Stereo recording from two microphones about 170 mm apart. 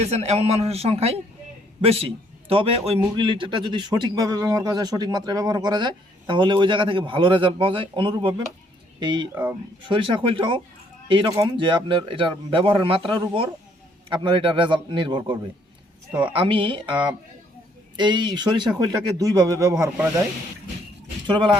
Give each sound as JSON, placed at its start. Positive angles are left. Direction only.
{"t": 0.0, "sound": "a man's voice", "side_deg": -40}
{"t": 9.3, "sound": "speech", "side_deg": -15}
{"t": 9.9, "sound": "a man's voice", "side_deg": -30}
{"t": 21.2, "sound": "speech", "side_deg": -30}